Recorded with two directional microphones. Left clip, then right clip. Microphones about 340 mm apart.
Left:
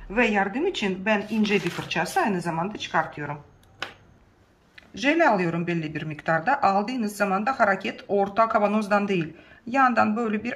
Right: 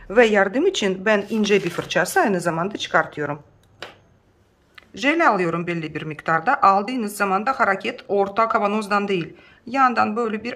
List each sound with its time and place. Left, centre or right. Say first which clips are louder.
0.1 s speech: right 7 dB; centre
4.7 s speech: right 2 dB; centre